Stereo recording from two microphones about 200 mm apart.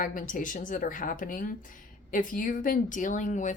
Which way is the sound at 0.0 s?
40° left (ahead or behind).